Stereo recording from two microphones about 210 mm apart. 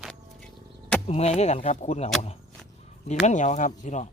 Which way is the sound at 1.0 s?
30° left (ahead or behind).